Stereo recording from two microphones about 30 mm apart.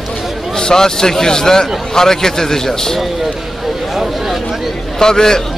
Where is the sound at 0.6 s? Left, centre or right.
Left.